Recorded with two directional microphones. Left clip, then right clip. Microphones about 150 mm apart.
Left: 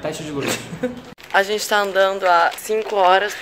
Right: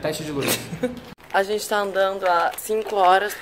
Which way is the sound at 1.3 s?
5° left (ahead or behind).